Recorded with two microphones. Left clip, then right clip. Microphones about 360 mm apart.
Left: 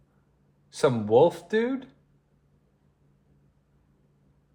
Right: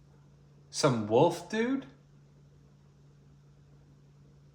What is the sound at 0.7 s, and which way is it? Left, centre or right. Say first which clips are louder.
Speech: left 5 dB; left.